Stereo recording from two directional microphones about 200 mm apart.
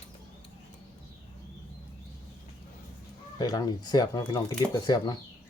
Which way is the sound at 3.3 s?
20° left (ahead or behind).